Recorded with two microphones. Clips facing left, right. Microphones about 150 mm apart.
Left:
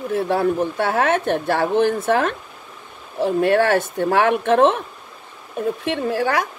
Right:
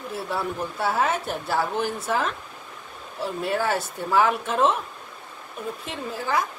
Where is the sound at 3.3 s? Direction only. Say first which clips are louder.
Left 9 dB; 70° left (ahead or behind).